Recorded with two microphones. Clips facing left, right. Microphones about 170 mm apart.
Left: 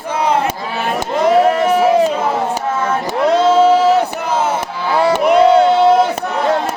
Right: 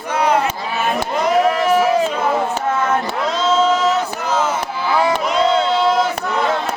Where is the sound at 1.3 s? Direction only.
30° left (ahead or behind).